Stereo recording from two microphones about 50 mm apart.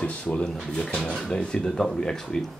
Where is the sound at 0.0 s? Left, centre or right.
Left.